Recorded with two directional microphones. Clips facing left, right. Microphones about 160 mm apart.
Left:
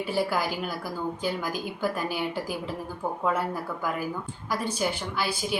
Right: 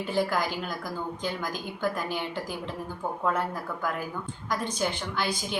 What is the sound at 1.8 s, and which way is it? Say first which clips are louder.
A woman's voice: left 1 dB; 10° left (ahead or behind).